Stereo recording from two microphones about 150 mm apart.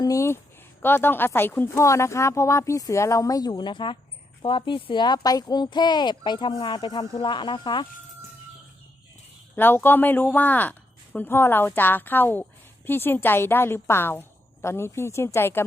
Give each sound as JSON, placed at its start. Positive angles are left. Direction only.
{"t": 0.0, "sound": "speech", "side_deg": 20}
{"t": 9.6, "sound": "speech", "side_deg": 15}